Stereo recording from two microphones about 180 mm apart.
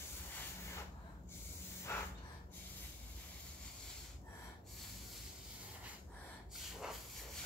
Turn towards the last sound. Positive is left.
turn(degrees=-5)  # may be behind; listen again after turning